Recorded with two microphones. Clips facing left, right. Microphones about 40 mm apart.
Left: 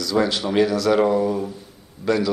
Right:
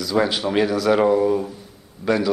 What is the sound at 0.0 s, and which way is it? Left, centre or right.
Speech, centre.